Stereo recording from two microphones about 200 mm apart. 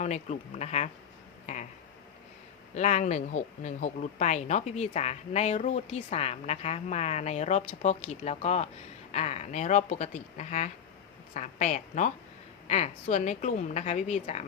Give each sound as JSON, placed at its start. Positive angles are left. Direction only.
{"t": 0.0, "sound": "speech", "side_deg": 35}
{"t": 2.7, "sound": "speech", "side_deg": 35}